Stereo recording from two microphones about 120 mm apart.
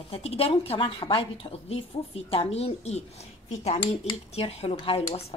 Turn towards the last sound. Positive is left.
turn(degrees=55)  # may be behind; listen again after turning